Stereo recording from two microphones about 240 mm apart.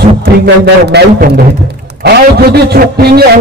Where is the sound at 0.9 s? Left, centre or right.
Right.